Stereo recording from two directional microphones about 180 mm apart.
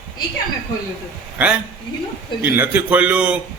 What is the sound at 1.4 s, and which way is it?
A man's voice, 10° right (ahead or behind).